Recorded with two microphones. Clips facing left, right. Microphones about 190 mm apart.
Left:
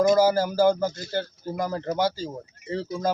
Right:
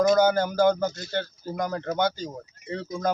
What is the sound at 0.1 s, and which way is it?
Speech, 5° left (ahead or behind).